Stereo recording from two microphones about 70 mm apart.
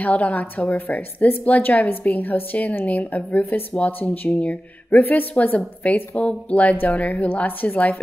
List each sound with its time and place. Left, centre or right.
0.0 s a woman's voice: centre